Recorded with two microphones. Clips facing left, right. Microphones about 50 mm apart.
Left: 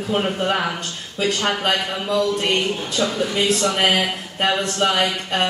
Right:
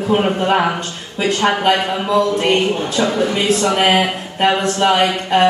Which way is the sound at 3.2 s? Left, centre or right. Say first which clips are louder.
Right 2 dB; centre.